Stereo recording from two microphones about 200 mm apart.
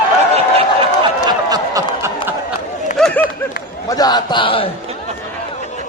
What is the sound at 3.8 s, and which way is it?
Speech, 20° left (ahead or behind).